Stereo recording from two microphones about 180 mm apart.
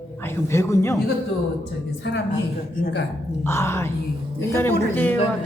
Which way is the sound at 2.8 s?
80° left.